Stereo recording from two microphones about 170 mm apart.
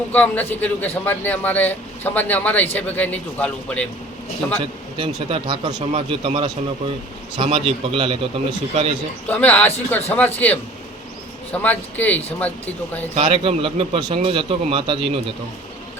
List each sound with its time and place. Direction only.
0.1 s a man's voice: 10° left (ahead or behind)
4.6 s speech: 30° right (ahead or behind)
9.2 s a man's voice: 10° left (ahead or behind)
13.1 s speech: 35° right (ahead or behind)